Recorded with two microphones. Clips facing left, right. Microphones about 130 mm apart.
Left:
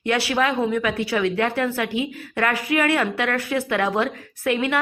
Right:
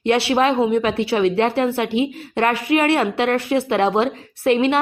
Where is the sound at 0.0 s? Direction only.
25° right (ahead or behind).